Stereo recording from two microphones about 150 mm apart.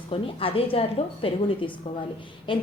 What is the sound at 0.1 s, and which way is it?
A woman's voice, 40° left (ahead or behind).